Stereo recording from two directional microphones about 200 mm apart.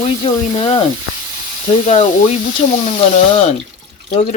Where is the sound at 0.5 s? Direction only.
20° left (ahead or behind).